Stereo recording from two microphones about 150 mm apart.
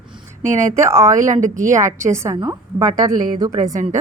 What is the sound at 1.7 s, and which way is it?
A woman's voice, 20° right (ahead or behind).